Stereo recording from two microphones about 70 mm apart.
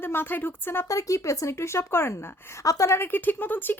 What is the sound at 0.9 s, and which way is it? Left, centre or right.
A woman's voice, left.